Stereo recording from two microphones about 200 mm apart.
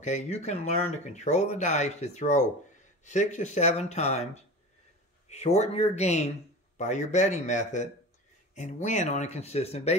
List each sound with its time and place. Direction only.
0.0 s speech: 35° left (ahead or behind)